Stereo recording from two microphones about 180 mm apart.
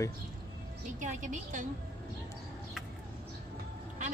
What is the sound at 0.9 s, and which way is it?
Speech, 45° right (ahead or behind).